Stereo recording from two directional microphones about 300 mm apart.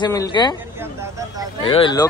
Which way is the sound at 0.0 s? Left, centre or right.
Centre.